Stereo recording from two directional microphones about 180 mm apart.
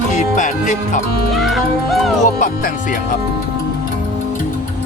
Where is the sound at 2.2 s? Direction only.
50° left (ahead or behind).